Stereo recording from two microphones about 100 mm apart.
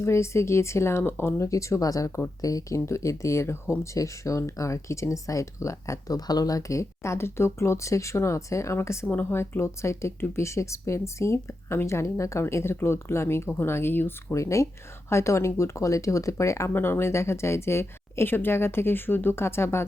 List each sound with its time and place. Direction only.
0.0 s speech: 30° left (ahead or behind)
14.3 s speech: 30° left (ahead or behind)